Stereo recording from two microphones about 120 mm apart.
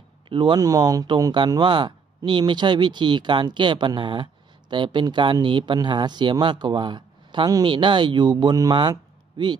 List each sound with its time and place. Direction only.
0.3 s speech: 40° right (ahead or behind)